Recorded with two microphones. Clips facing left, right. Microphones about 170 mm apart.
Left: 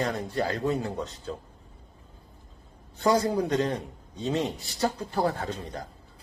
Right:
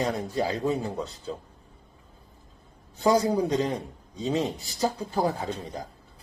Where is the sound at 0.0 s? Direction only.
10° right (ahead or behind).